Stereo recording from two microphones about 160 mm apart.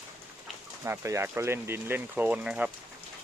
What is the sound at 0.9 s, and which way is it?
Speech, 15° right (ahead or behind).